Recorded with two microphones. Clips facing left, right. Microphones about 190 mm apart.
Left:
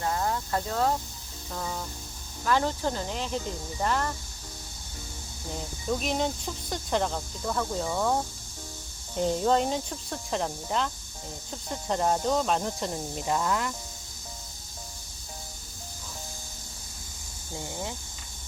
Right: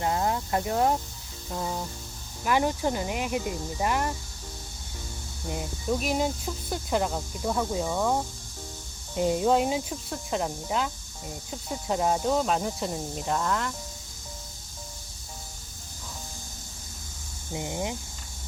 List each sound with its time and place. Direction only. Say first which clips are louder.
0.0 s snake: right 2 dB; 20° right (ahead or behind)
1.5 s music: right 3 dB; 20° right (ahead or behind)
2.4 s speech: right 1 dB; 15° right (ahead or behind)
5.9 s speech: right 1 dB; 5° right (ahead or behind)
17.5 s speech: right 4 dB; 15° right (ahead or behind)